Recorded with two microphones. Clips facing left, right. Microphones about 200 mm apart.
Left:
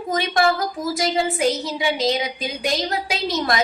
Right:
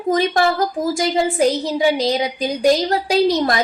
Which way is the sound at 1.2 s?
35° right (ahead or behind).